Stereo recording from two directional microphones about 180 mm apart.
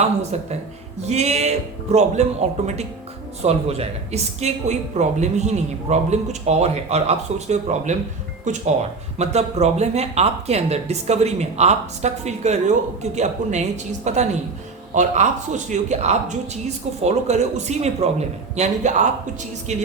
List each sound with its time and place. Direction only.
0.0 s speech: 35° right (ahead or behind)
3.4 s speech: 35° right (ahead or behind)